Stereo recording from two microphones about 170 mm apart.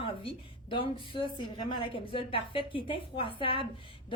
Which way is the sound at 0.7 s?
30° left (ahead or behind).